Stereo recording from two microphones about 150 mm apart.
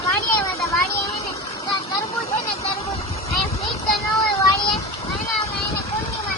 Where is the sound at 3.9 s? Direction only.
Centre (ahead or behind).